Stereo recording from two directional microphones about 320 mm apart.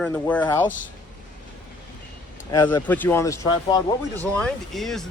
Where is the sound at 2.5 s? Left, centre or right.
Centre.